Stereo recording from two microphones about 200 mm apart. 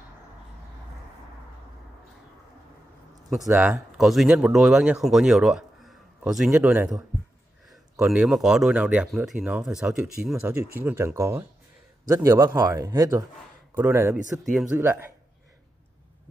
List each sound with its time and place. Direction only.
3.4 s speech: 10° right (ahead or behind)
8.1 s speech: 5° right (ahead or behind)